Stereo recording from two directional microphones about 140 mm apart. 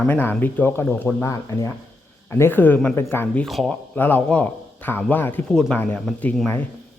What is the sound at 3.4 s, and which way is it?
Speech, centre (ahead or behind).